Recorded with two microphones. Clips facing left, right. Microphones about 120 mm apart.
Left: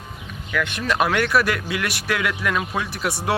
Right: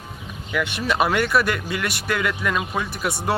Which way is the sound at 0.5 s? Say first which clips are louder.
Even; 5° right (ahead or behind).